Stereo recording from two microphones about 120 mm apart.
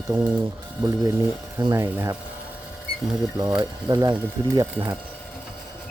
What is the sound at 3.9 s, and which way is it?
Speech, 30° right (ahead or behind).